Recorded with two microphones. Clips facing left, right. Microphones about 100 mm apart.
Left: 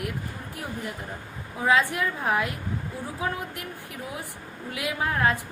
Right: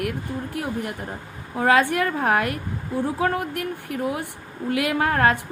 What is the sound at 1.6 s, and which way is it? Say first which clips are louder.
A woman's voice: right 4 dB; 65° right (ahead or behind).